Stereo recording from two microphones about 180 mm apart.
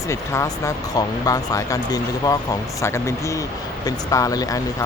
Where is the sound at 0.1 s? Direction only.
15° left (ahead or behind).